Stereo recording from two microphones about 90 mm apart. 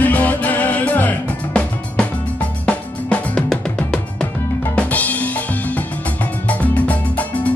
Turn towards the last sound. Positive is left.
turn(degrees=15)  # may be behind; listen again after turning